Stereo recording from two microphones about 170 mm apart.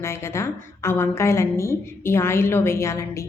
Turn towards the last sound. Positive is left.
turn(degrees=15)  # may be behind; listen again after turning